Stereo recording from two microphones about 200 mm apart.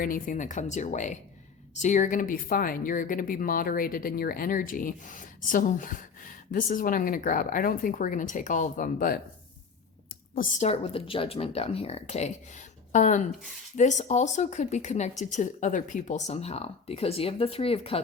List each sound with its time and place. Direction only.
0.0 s speech: 45° left (ahead or behind)
10.3 s a woman's voice: 35° left (ahead or behind)